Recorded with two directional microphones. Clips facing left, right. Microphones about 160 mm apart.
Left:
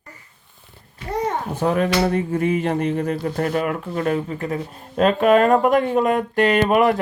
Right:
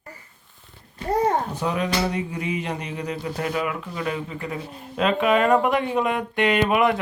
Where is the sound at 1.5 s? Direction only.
50° left (ahead or behind).